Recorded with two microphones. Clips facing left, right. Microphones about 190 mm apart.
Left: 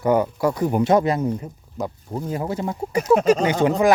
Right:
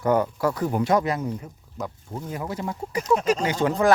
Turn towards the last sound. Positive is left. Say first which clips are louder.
# left 5 dB
turn(degrees=20)  # may be behind; listen again after turning